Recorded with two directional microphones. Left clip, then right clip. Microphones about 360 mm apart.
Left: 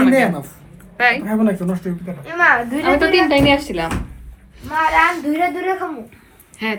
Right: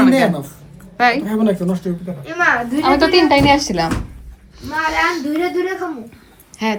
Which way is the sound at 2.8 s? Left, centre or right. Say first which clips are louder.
Right 3 dB; centre.